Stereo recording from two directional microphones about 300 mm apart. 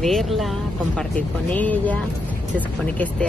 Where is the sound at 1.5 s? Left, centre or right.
Centre.